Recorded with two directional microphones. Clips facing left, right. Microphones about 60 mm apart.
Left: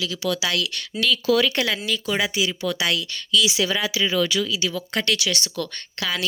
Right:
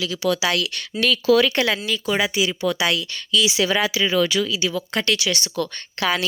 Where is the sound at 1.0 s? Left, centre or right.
Right.